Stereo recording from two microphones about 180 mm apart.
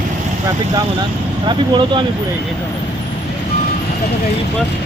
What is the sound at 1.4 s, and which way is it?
Speech, 25° right (ahead or behind).